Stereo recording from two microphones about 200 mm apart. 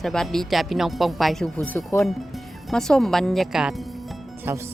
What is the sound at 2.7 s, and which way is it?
Speech, centre (ahead or behind).